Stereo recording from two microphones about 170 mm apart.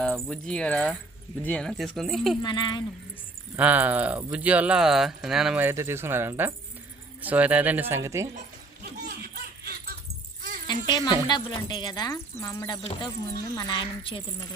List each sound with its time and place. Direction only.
0.0 s speech: 5° left (ahead or behind)
2.4 s speech: 30° left (ahead or behind)
3.5 s speech: 10° right (ahead or behind)
9.3 s laughter: 65° right (ahead or behind)
10.7 s speech: 25° left (ahead or behind)
12.8 s speech: 40° left (ahead or behind)